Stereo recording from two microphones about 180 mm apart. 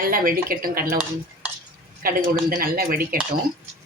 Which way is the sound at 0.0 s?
50° right (ahead or behind).